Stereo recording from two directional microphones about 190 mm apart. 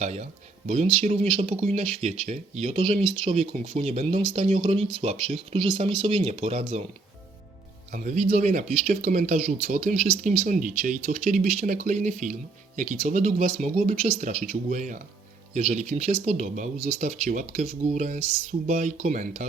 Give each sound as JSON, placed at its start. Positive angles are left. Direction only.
{"t": 0.0, "sound": "speech", "side_deg": -35}
{"t": 7.9, "sound": "speech", "side_deg": -40}